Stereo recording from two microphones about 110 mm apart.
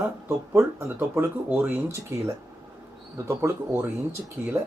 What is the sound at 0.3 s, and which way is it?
Speech, 25° right (ahead or behind).